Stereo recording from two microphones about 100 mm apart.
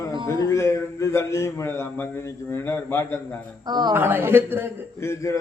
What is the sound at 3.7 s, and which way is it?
Speech, 45° right (ahead or behind).